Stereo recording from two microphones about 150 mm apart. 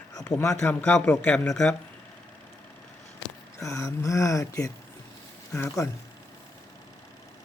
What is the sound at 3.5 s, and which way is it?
Speech, 20° left (ahead or behind).